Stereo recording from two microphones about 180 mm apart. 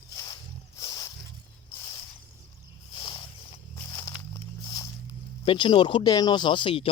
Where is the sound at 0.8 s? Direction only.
20° left (ahead or behind).